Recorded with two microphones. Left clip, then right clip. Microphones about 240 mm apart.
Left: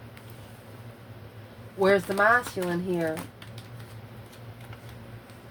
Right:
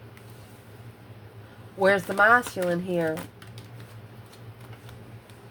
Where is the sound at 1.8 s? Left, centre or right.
Right.